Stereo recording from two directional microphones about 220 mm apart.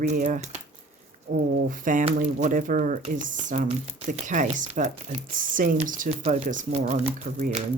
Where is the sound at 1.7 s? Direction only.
35° right (ahead or behind).